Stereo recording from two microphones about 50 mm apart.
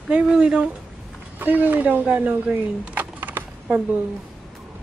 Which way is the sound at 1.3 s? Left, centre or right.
Right.